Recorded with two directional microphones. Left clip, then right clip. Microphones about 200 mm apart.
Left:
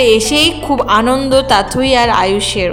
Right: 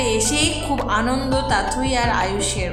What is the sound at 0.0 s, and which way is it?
Speech, 40° left (ahead or behind).